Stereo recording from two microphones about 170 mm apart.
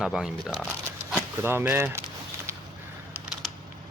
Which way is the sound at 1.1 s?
15° right (ahead or behind).